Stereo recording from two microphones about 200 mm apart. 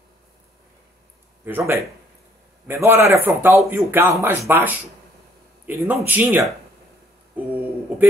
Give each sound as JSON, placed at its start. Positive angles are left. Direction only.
{"t": 1.4, "sound": "speech", "side_deg": -10}